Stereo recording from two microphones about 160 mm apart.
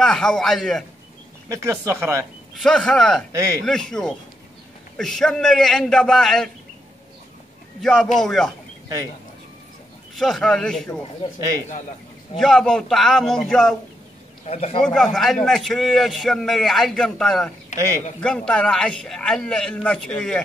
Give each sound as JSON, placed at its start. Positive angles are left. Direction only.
{"t": 0.0, "sound": "a man's voice", "side_deg": 5}
{"t": 1.5, "sound": "speech", "side_deg": -15}
{"t": 2.6, "sound": "a man's voice", "side_deg": 5}
{"t": 7.8, "sound": "a man's voice", "side_deg": 5}
{"t": 10.1, "sound": "a man's voice", "side_deg": 0}
{"t": 12.4, "sound": "a man's voice", "side_deg": 5}
{"t": 14.4, "sound": "a man's voice", "side_deg": 40}
{"t": 14.8, "sound": "a man's voice", "side_deg": 5}